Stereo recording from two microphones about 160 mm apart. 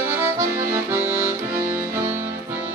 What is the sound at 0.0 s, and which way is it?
Accordion, 15° right (ahead or behind).